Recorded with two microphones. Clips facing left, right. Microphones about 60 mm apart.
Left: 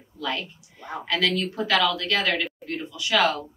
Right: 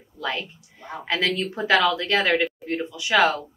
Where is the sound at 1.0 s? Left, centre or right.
Right.